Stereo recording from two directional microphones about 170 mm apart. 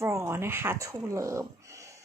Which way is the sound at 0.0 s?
15° right (ahead or behind).